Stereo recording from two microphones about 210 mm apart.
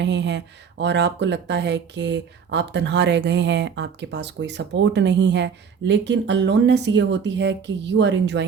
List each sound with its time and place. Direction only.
0.0 s speech: 55° right (ahead or behind)